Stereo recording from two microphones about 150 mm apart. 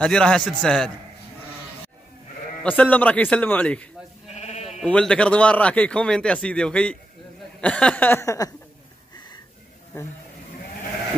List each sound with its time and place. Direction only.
0.0 s a man's voice: 5° left (ahead or behind)
2.6 s a man's voice: 10° left (ahead or behind)
4.3 s sheep: 45° left (ahead or behind)
4.8 s a man's voice: 5° left (ahead or behind)